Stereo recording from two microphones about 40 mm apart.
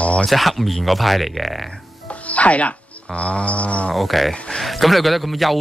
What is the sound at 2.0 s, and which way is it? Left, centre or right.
Speech, left.